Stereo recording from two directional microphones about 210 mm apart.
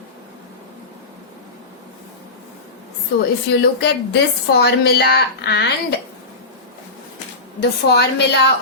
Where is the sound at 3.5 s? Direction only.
55° left (ahead or behind).